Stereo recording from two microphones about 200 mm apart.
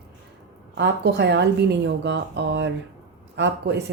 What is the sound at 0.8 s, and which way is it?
Speech, 60° right (ahead or behind).